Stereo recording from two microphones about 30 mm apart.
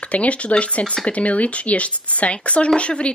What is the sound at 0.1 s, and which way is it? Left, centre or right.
Speech, left.